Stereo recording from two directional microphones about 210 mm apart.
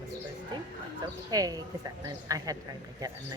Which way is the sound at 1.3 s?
20° right (ahead or behind).